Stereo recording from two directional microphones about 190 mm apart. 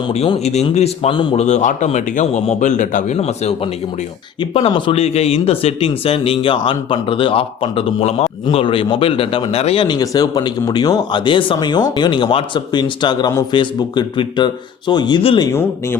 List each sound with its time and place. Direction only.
0.1 s speech: 35° left (ahead or behind)